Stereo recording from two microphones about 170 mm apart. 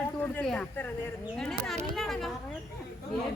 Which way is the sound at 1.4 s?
Centre (ahead or behind).